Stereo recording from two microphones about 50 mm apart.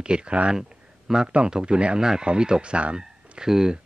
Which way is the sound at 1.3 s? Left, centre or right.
Centre.